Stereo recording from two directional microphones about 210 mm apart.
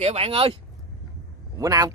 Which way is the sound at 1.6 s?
15° right (ahead or behind).